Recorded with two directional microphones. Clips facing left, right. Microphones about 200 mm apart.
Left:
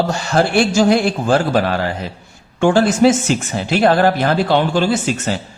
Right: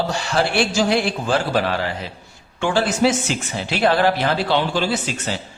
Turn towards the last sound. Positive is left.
turn(degrees=50)  # may be behind; listen again after turning